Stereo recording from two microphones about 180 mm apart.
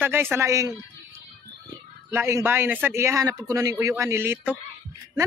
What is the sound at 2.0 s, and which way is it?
Speech, 15° right (ahead or behind).